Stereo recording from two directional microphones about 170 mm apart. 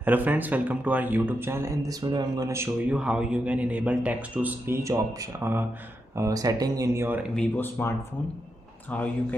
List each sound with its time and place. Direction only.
0.0 s speech: 10° right (ahead or behind)
7.3 s speech: 10° left (ahead or behind)